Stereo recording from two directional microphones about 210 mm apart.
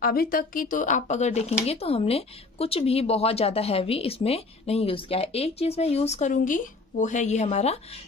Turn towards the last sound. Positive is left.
turn(degrees=30)  # may be behind; listen again after turning